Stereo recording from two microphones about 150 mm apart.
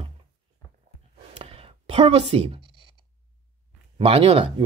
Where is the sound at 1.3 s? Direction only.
40° right (ahead or behind).